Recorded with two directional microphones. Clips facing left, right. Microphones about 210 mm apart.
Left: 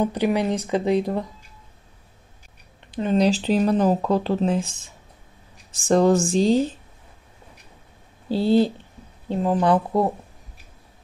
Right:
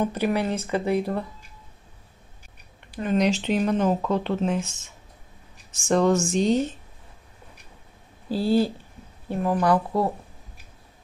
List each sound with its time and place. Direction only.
0.0 s speech: 15° left (ahead or behind)
2.9 s speech: 30° left (ahead or behind)
8.3 s speech: 20° left (ahead or behind)